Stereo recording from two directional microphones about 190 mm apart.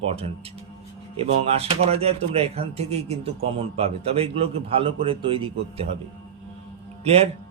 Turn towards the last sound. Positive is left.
turn(degrees=-35)  # may be behind; listen again after turning